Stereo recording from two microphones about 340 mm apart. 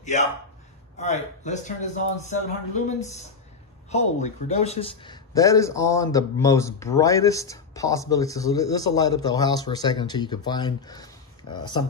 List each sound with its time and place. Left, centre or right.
0.0 s a man's voice: left
0.9 s a sound: centre
3.9 s a man's voice: centre